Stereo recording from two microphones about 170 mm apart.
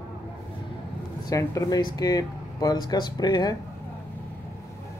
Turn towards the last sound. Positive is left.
turn(degrees=25)  # may be behind; listen again after turning